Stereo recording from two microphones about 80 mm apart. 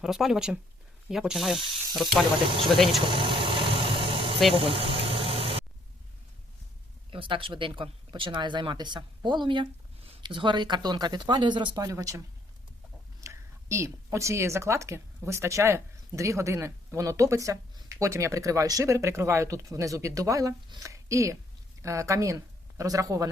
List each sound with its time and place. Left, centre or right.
0.0 s speech: centre
2.4 s speech: right
2.6 s speech: centre
3.0 s vehicle: right
4.5 s speech: right
7.1 s speech: right
11.8 s speech: right
13.2 s a woman's voice: right